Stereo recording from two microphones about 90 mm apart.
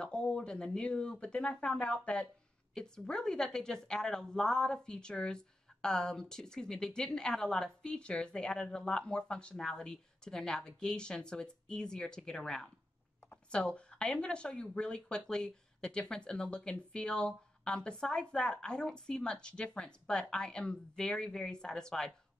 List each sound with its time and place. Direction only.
0.0 s a woman's voice: 10° left (ahead or behind)